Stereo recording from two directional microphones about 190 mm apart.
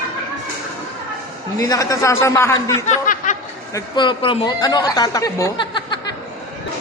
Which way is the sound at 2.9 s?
40° left (ahead or behind).